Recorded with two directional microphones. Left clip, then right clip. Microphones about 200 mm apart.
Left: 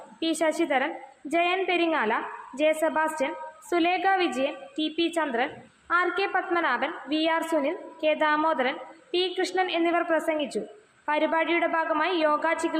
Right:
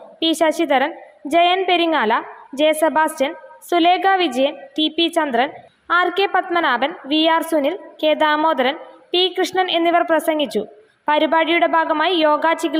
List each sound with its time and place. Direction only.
0.2 s a woman's voice: 35° right (ahead or behind)